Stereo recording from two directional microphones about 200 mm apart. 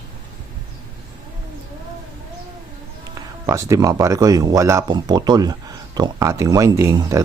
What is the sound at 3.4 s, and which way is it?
Speech, 15° right (ahead or behind).